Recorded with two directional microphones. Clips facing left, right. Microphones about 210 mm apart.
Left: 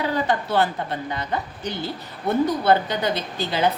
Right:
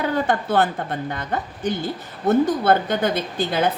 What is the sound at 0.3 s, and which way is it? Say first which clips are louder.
Speech: right 2 dB; 50° right (ahead or behind).